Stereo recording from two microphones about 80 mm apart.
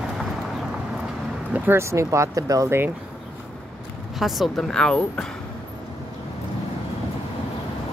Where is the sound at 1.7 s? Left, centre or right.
Right.